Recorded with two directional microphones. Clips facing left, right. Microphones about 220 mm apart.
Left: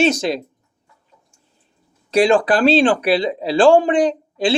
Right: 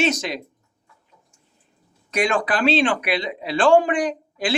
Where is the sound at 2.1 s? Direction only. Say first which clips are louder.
Left 8 dB; 30° left (ahead or behind).